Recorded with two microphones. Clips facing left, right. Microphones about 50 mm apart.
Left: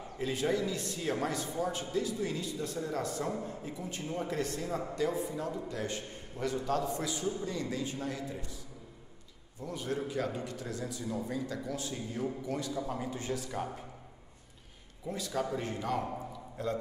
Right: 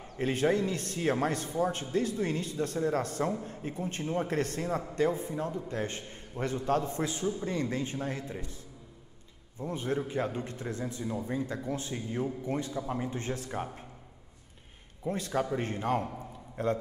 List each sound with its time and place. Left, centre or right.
0.2 s a man's voice: right
9.6 s a man's voice: right
13.1 s a man's voice: right
15.0 s a man's voice: right